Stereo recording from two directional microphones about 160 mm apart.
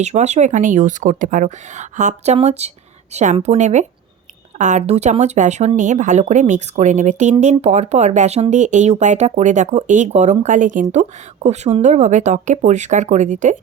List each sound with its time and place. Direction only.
0.0 s speech: 45° right (ahead or behind)